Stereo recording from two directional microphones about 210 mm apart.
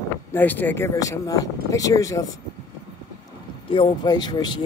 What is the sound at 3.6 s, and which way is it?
Speech, 20° left (ahead or behind).